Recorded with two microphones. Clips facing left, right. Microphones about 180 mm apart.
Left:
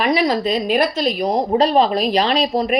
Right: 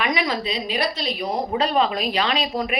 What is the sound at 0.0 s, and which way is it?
Speech, 35° left (ahead or behind).